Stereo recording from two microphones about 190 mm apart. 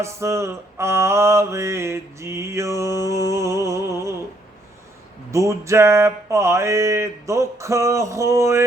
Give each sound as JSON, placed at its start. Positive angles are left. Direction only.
{"t": 0.0, "sound": "mantra", "side_deg": -15}
{"t": 5.3, "sound": "mantra", "side_deg": -15}